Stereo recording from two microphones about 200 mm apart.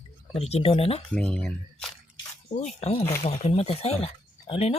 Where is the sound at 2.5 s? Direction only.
35° left (ahead or behind).